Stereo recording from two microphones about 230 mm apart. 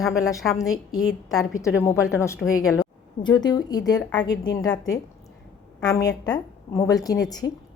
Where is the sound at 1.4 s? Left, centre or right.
Centre.